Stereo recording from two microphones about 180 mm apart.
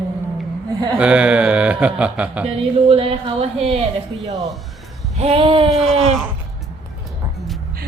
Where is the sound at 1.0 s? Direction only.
5° right (ahead or behind).